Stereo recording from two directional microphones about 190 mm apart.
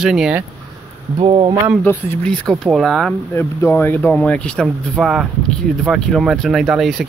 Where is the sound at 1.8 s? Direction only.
5° left (ahead or behind).